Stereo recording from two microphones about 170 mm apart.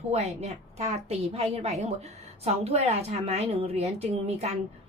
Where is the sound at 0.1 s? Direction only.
40° right (ahead or behind).